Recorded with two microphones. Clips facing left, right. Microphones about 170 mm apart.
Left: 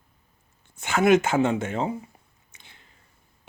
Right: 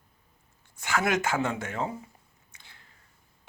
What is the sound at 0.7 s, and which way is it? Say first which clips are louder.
Speech: left 8 dB; 25° left (ahead or behind).